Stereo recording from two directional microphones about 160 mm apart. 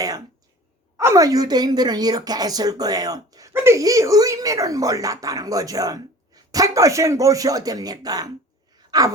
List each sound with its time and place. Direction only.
0.9 s a woman's voice: 20° right (ahead or behind)